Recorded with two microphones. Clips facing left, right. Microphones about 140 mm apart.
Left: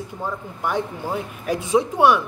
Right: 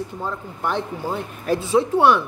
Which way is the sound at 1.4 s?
15° left (ahead or behind).